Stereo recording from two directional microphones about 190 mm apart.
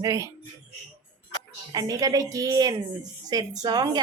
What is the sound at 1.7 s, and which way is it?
Speech, 20° right (ahead or behind).